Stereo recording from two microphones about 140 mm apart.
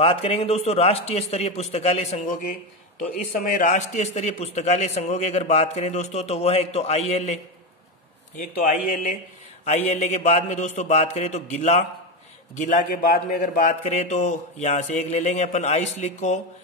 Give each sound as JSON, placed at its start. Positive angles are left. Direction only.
{"t": 0.0, "sound": "a man's voice", "side_deg": 45}
{"t": 3.0, "sound": "a man's voice", "side_deg": 75}
{"t": 8.4, "sound": "a man's voice", "side_deg": 70}
{"t": 9.8, "sound": "a man's voice", "side_deg": 50}
{"t": 13.8, "sound": "speech", "side_deg": 55}